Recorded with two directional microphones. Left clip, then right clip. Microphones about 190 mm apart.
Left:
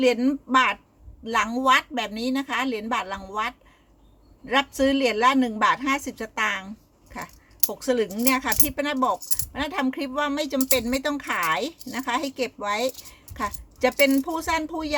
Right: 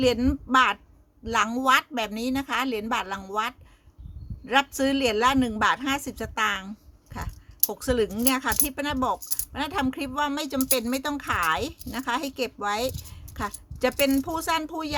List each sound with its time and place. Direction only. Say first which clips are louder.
0.0 s speech: left 2 dB; 25° right (ahead or behind)
7.7 s speech: left 1 dB; 25° right (ahead or behind)